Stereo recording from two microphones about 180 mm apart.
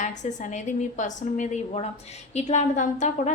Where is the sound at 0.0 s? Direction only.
40° left (ahead or behind).